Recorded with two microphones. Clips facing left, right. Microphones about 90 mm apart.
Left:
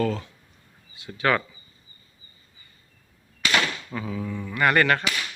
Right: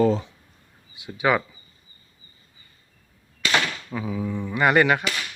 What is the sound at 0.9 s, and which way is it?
Speech, 15° right (ahead or behind).